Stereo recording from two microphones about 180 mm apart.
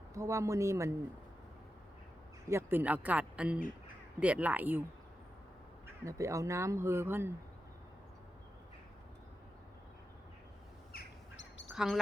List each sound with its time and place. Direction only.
0.1 s speech: 15° right (ahead or behind)
2.5 s speech: 15° right (ahead or behind)
6.1 s speech: 15° right (ahead or behind)
10.9 s bird: 90° left
11.7 s speech: 5° right (ahead or behind)